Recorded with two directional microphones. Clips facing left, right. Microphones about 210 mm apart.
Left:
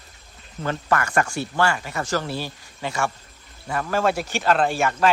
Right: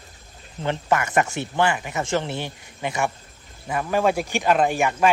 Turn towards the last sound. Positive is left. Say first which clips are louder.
# right 1 dB
turn(degrees=-15)  # may be behind; listen again after turning